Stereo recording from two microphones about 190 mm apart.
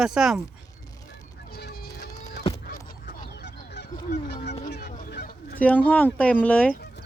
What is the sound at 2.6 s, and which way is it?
Goose, 50° left (ahead or behind).